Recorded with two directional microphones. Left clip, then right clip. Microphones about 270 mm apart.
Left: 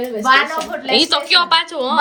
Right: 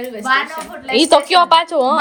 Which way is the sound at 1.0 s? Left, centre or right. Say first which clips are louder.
Right 4 dB; centre.